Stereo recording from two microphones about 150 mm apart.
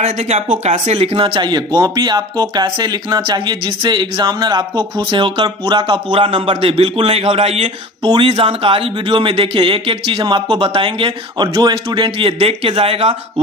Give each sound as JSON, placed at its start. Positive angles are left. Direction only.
{"t": 0.0, "sound": "speech", "side_deg": -45}